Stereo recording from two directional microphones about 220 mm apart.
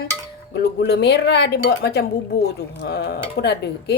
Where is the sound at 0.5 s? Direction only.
50° left (ahead or behind).